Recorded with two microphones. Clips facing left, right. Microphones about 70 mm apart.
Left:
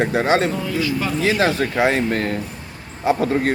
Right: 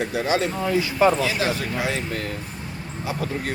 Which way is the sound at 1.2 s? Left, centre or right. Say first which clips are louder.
Left 6 dB; left.